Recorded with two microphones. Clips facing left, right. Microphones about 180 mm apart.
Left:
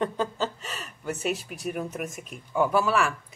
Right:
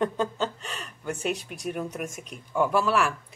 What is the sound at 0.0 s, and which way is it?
Speech, centre (ahead or behind).